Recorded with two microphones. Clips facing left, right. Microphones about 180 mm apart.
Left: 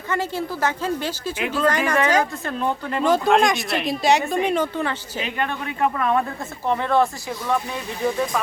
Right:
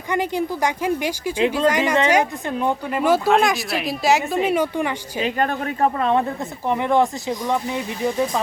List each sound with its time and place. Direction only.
0.1 s speech: 15° right (ahead or behind)
5.2 s speech: 40° right (ahead or behind)
6.7 s speech: 15° right (ahead or behind)